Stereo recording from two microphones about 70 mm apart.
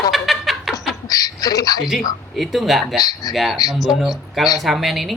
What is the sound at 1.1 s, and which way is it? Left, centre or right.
Speech, left.